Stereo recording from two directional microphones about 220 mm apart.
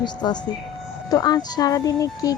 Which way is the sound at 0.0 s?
20° left (ahead or behind).